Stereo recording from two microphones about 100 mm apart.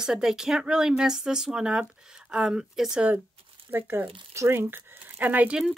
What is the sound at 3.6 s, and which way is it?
Speech, 20° right (ahead or behind).